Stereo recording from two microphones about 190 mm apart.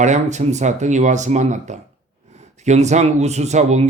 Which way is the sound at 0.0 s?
40° right (ahead or behind).